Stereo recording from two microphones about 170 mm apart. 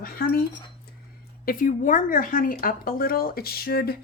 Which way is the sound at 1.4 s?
55° left (ahead or behind).